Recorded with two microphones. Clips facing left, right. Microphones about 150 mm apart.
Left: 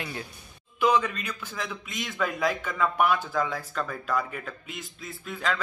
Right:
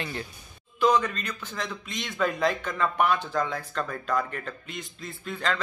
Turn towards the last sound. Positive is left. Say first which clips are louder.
# right 1 dB
turn(degrees=5)  # may be behind; listen again after turning